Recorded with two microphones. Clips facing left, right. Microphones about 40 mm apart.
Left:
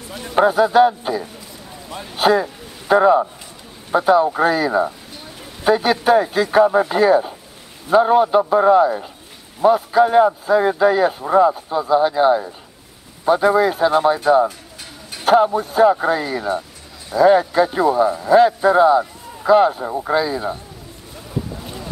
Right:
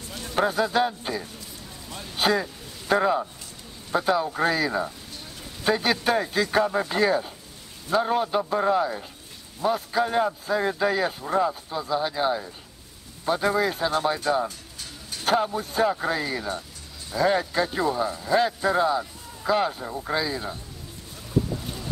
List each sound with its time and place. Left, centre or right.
0.2 s speech: left
0.5 s speech: centre
1.9 s speech: left
2.1 s speech: centre
21.5 s boat: centre